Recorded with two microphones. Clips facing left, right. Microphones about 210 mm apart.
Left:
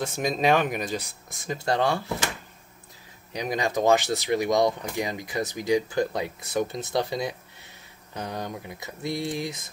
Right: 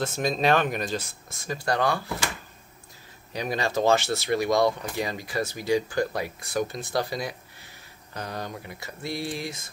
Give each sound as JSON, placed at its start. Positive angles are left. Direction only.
{"t": 0.0, "sound": "speech", "side_deg": 15}
{"t": 3.3, "sound": "speech", "side_deg": 15}